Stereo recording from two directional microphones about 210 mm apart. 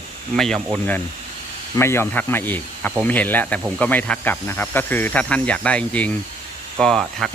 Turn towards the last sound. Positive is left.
turn(degrees=0)  # may be behind; listen again after turning